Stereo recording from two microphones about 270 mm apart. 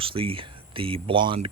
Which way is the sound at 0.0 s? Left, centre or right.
Centre.